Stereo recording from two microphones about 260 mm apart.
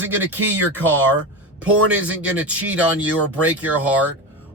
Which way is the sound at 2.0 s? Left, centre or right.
Centre.